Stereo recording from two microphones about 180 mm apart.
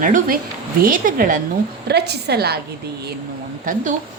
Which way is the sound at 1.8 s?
65° right (ahead or behind).